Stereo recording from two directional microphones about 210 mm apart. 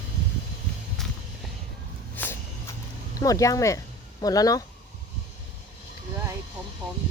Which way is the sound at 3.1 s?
15° left (ahead or behind).